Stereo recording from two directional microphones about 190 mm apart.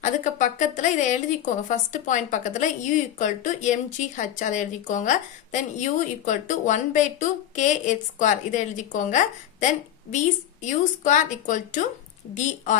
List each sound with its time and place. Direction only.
0.0 s speech: 40° left (ahead or behind)